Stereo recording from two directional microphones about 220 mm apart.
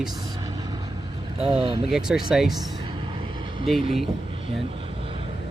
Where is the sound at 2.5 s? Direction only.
20° right (ahead or behind).